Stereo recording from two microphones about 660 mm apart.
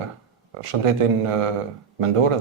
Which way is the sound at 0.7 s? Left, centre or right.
Right.